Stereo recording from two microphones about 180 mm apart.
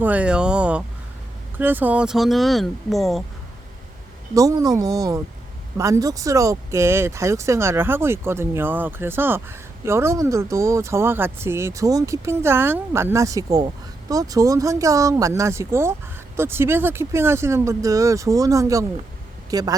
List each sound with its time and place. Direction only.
0.0 s speech: 10° right (ahead or behind)
4.4 s speech: 20° right (ahead or behind)